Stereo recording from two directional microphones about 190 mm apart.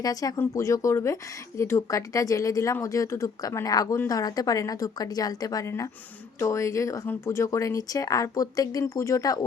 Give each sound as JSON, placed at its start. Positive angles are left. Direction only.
{"t": 0.0, "sound": "speech", "side_deg": 20}